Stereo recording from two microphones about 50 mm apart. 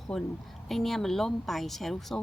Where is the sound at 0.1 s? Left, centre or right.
Centre.